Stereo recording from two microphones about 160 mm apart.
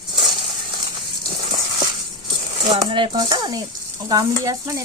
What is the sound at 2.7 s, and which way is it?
Stir, 35° right (ahead or behind).